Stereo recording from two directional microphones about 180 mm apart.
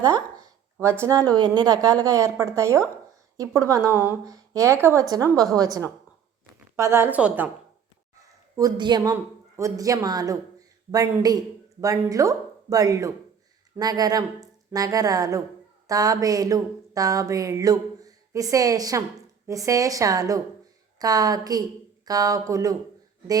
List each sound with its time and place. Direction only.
0.0 s a woman's voice: 20° right (ahead or behind)
8.5 s a woman's voice: 20° right (ahead or behind)